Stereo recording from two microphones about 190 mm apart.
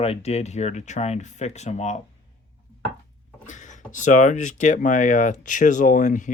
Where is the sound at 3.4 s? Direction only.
40° left (ahead or behind).